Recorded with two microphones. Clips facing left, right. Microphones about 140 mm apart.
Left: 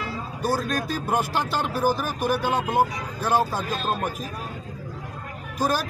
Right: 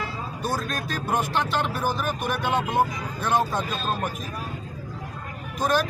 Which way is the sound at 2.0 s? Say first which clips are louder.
Left 2 dB; 35° left (ahead or behind).